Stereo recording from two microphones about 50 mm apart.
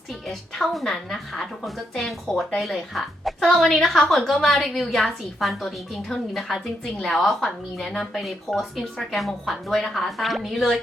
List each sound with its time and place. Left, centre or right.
0.1 s a woman's voice: centre